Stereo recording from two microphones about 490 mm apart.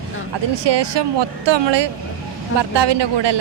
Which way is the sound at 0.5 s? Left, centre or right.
Right.